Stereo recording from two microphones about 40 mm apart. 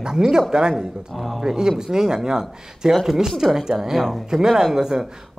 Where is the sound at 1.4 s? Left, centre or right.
Centre.